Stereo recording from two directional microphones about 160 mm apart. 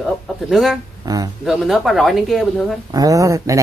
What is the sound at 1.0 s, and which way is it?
Speech, 25° right (ahead or behind).